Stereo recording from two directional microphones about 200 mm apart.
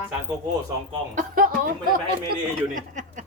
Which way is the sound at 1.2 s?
45° right (ahead or behind).